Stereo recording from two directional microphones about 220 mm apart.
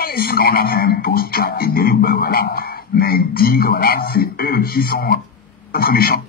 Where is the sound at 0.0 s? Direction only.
45° left (ahead or behind).